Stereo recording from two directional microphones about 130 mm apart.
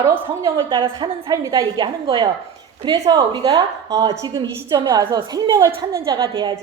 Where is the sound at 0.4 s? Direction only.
35° right (ahead or behind).